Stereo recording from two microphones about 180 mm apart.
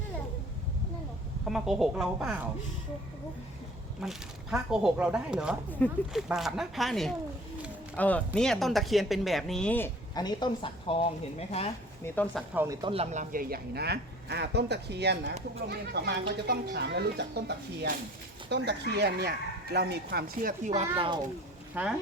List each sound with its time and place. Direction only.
1.5 s speech: centre (ahead or behind)
4.0 s speech: centre (ahead or behind)
5.8 s speech: 10° left (ahead or behind)
6.1 s speech: centre (ahead or behind)
10.2 s a woman's voice: 25° left (ahead or behind)
12.0 s speech: 10° left (ahead or behind)
12.5 s speech: 20° right (ahead or behind)
12.9 s speech: 35° right (ahead or behind); by 17.4 s 70° right (ahead or behind)
18.4 s speech: 65° right (ahead or behind); by 20.8 s 45° right (ahead or behind)
20.9 s speech: 30° right (ahead or behind)
21.8 s speech: 10° right (ahead or behind)